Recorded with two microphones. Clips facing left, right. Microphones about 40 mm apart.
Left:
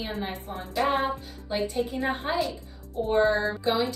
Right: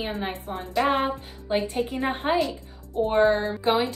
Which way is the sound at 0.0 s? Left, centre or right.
Right.